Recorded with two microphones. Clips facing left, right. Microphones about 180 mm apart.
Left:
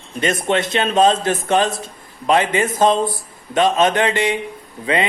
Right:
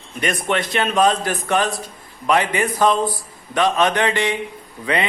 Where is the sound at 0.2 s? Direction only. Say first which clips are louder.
Left 3 dB; 25° left (ahead or behind).